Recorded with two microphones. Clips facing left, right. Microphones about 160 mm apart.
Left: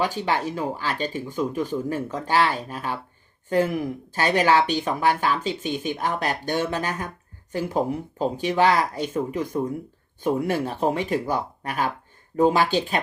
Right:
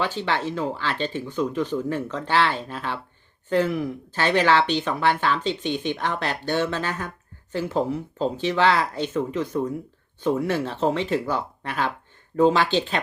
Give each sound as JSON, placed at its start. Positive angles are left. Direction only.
{"t": 0.0, "sound": "speech", "side_deg": 10}